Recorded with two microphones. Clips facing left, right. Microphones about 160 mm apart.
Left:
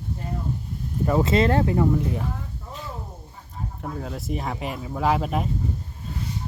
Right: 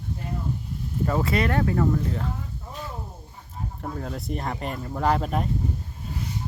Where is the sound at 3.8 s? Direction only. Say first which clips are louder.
Left 1 dB; centre (ahead or behind).